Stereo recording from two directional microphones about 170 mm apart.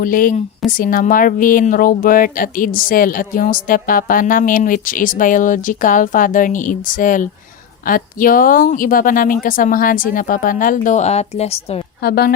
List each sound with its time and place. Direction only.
0.0 s a woman's voice: 55° left (ahead or behind); by 11.8 s 35° left (ahead or behind)
12.0 s a woman's voice: 65° left (ahead or behind)